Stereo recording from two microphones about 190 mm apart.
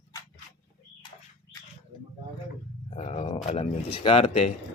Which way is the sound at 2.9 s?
35° left (ahead or behind).